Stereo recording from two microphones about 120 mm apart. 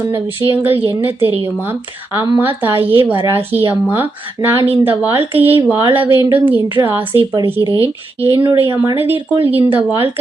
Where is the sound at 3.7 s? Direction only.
15° right (ahead or behind).